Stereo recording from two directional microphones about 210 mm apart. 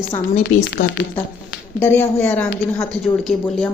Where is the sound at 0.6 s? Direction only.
60° left (ahead or behind).